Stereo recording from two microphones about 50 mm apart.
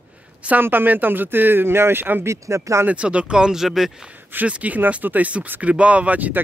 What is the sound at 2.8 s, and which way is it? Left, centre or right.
Speech, right.